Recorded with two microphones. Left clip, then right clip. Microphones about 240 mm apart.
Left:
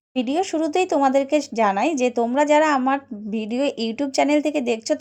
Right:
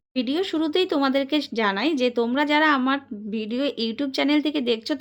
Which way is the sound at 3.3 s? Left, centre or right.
Centre.